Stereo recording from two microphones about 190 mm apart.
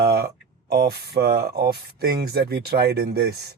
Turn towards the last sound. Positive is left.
turn(degrees=-55)  # may be behind; listen again after turning